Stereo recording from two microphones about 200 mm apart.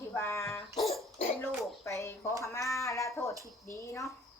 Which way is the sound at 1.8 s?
15° left (ahead or behind).